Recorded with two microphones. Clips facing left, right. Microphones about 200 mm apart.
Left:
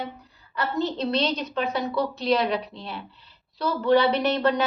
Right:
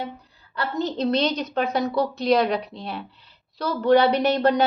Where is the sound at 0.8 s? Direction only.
40° right (ahead or behind).